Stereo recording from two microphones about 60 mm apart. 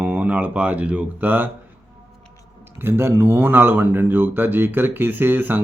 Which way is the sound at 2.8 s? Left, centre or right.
Right.